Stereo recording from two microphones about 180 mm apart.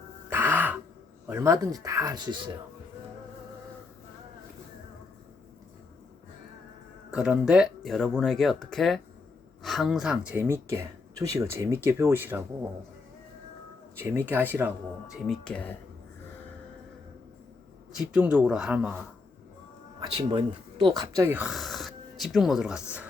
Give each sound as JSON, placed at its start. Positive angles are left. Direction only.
{"t": 0.3, "sound": "throat clearing", "side_deg": -10}
{"t": 1.3, "sound": "speech", "side_deg": -15}
{"t": 7.1, "sound": "speech", "side_deg": -5}
{"t": 14.0, "sound": "speech", "side_deg": -10}
{"t": 15.1, "sound": "speech", "side_deg": 5}
{"t": 17.9, "sound": "speech", "side_deg": -5}
{"t": 20.0, "sound": "speech", "side_deg": -25}